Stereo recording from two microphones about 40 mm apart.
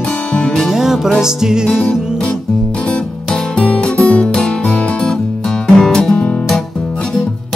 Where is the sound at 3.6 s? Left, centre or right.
Left.